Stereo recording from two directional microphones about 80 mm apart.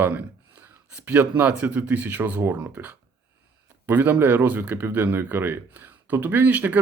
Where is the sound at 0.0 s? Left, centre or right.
Right.